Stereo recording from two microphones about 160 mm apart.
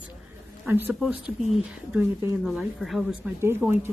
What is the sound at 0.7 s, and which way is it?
Speech, 15° right (ahead or behind).